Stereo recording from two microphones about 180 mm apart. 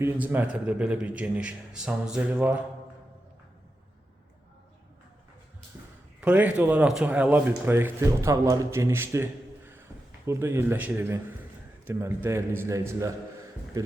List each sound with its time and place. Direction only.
0.0 s speech: 10° right (ahead or behind)
5.7 s a sound: 10° right (ahead or behind)
6.1 s speech: 5° right (ahead or behind)